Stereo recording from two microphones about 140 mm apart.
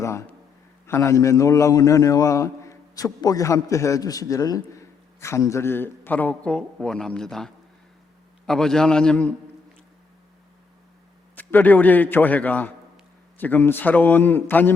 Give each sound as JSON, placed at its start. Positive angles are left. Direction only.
{"t": 0.0, "sound": "a man's voice", "side_deg": 20}
{"t": 11.3, "sound": "a man's voice", "side_deg": 10}